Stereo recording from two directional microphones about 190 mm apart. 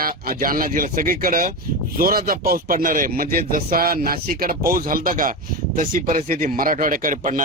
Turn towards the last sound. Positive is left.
turn(degrees=-45)  # may be behind; listen again after turning